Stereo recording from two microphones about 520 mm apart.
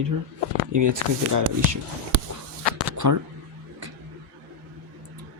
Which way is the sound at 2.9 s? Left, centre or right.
Right.